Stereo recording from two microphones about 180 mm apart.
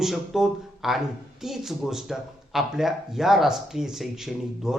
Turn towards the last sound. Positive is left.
turn(degrees=0)  # may be behind; listen again after turning